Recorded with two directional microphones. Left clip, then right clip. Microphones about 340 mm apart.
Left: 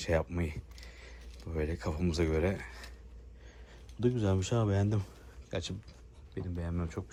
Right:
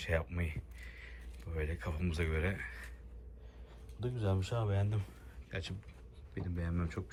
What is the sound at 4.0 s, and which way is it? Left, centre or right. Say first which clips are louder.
Speech: left 7 dB; left.